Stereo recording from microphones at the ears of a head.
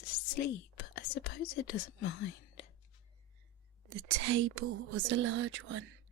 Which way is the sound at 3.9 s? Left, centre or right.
Right.